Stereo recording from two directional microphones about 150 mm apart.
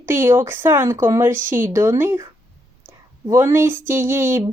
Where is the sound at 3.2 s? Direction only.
15° right (ahead or behind).